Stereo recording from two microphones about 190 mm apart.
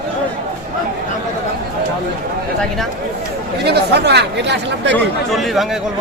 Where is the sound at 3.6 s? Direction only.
60° right (ahead or behind).